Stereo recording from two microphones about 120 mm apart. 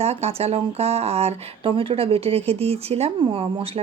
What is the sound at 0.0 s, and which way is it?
A woman's voice, 60° right (ahead or behind).